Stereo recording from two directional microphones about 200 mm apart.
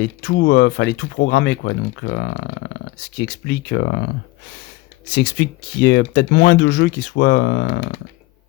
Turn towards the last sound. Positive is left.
turn(degrees=55)  # may be behind; listen again after turning